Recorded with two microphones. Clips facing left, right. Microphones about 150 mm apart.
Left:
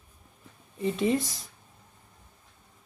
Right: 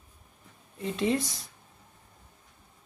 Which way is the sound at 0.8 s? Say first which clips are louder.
Left 2 dB; centre (ahead or behind).